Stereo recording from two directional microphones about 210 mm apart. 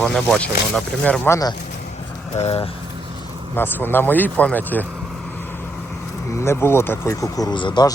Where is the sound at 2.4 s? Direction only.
30° left (ahead or behind).